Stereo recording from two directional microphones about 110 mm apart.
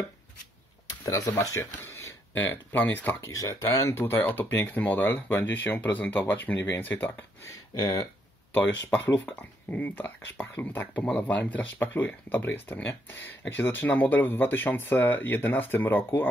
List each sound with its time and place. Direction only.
0.8 s a sound: 30° left (ahead or behind)
1.3 s speech: 25° left (ahead or behind)
7.8 s speech: 40° left (ahead or behind)
9.1 s speech: 15° left (ahead or behind)